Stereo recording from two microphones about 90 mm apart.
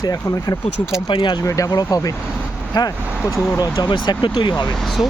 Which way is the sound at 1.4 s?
40° left (ahead or behind).